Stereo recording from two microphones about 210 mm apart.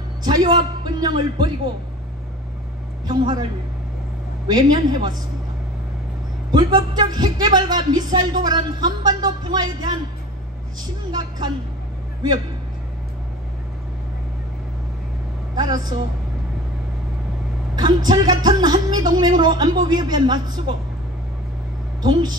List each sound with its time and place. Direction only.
0.2 s speech: 20° right (ahead or behind)
3.1 s speech: 20° right (ahead or behind)
4.5 s speech: 20° right (ahead or behind)
6.5 s speech: 20° right (ahead or behind)
11.1 s speech: 20° right (ahead or behind)
15.5 s a woman's voice: 20° right (ahead or behind)
17.7 s speech: 20° right (ahead or behind)